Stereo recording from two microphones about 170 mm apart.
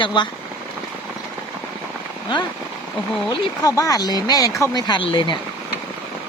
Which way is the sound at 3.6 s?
20° left (ahead or behind).